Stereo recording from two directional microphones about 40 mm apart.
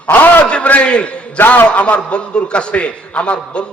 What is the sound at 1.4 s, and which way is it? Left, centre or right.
Speech, left.